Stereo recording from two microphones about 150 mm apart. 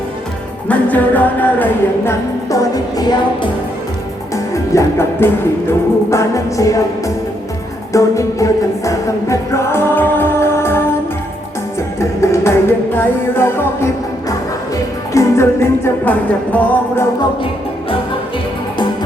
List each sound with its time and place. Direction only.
0.7 s music: 10° left (ahead or behind)
3.0 s music: 25° left (ahead or behind)
4.5 s music: 20° left (ahead or behind)
7.9 s music: 20° left (ahead or behind)
11.9 s music: 20° left (ahead or behind)
15.1 s music: 20° left (ahead or behind)